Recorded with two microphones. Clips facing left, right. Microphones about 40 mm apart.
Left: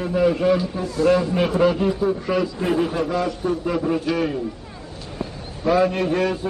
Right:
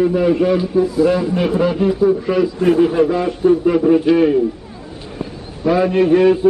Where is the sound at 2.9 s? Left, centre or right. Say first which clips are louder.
Right 7 dB; right.